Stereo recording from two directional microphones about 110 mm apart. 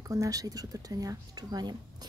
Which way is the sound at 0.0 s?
30° right (ahead or behind).